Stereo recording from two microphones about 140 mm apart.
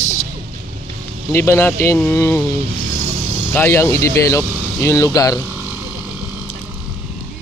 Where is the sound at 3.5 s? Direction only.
15° left (ahead or behind).